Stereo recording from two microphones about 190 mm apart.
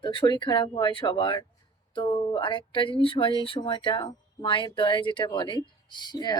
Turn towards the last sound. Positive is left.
turn(degrees=20)  # may be behind; listen again after turning